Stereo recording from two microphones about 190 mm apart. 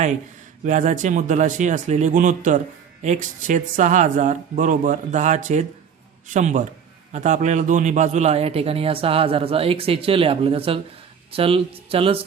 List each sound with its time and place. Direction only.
0.6 s a man's voice: 40° right (ahead or behind)